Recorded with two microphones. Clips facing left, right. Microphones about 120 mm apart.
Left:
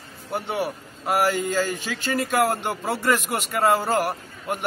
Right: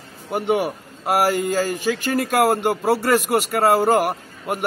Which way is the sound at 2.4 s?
5° right (ahead or behind).